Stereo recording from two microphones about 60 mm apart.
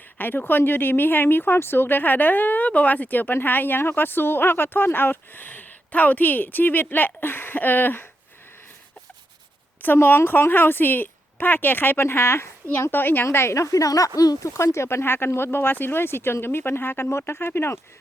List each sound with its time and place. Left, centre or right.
0.2 s speech: left
9.8 s speech: left
13.2 s a woman's voice: left
14.4 s speech: left